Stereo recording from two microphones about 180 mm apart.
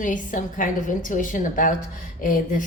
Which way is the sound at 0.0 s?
45° left (ahead or behind).